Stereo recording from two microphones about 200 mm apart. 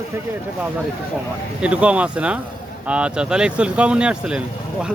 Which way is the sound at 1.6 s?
5° right (ahead or behind).